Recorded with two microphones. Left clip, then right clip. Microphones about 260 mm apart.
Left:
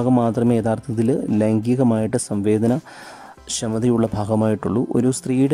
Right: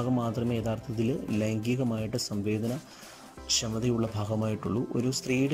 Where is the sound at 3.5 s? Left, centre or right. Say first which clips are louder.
Left 8 dB; left.